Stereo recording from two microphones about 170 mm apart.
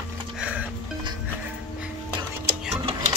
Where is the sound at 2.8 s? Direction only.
30° right (ahead or behind).